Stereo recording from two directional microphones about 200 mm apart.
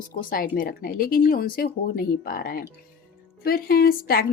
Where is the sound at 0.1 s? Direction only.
45° left (ahead or behind).